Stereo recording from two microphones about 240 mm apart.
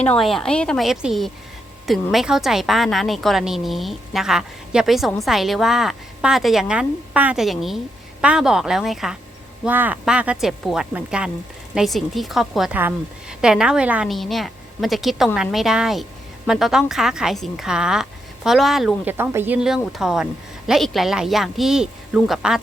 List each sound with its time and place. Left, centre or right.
0.0 s a woman's voice: centre